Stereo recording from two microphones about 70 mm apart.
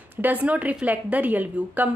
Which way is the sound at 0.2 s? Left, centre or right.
Right.